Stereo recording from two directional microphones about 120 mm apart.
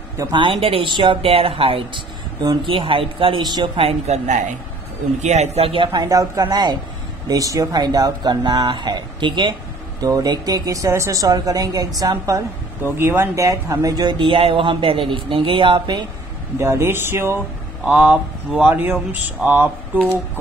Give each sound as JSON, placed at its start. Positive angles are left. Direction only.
{"t": 0.2, "sound": "speech", "side_deg": -40}
{"t": 3.7, "sound": "a woman's voice", "side_deg": -60}
{"t": 6.0, "sound": "speech", "side_deg": -30}
{"t": 16.5, "sound": "speech", "side_deg": -20}